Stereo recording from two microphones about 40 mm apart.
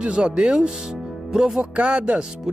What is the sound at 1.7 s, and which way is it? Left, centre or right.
Speech, right.